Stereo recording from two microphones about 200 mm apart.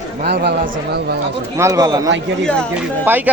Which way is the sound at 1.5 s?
15° right (ahead or behind).